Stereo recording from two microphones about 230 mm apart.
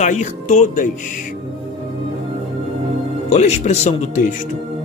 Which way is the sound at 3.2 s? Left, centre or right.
Left.